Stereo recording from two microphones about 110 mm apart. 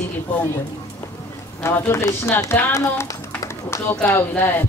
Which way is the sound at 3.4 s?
25° left (ahead or behind).